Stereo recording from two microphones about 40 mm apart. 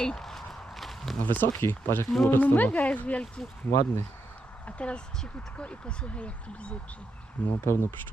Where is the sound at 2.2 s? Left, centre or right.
Left.